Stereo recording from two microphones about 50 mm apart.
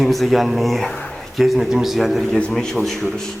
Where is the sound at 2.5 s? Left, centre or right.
Centre.